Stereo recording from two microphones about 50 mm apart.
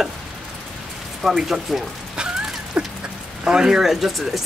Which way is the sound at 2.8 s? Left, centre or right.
Right.